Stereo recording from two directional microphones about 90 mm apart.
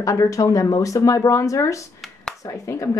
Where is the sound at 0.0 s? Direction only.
35° left (ahead or behind).